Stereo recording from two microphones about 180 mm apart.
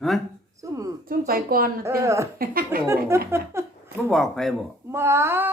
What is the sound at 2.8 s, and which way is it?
Speech, 15° right (ahead or behind).